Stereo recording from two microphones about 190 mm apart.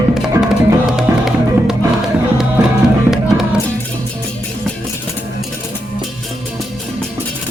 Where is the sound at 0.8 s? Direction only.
Centre (ahead or behind).